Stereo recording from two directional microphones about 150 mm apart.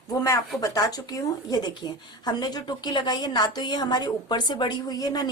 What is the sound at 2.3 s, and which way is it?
A woman's voice, 25° left (ahead or behind).